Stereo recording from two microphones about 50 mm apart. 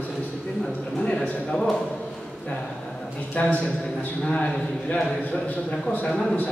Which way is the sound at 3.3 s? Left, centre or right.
Left.